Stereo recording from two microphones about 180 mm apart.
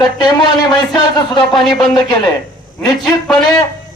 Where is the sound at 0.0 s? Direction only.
25° left (ahead or behind).